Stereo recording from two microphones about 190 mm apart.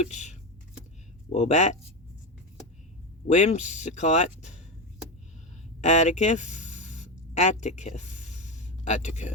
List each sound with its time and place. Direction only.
0.0 s speech: 40° left (ahead or behind)
3.2 s speech: 40° left (ahead or behind)
5.8 s a sound: 40° left (ahead or behind)